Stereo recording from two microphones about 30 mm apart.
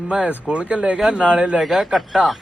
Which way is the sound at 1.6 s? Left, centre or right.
Centre.